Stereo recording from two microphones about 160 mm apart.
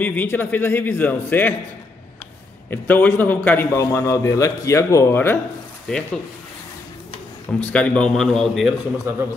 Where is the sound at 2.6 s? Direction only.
10° left (ahead or behind).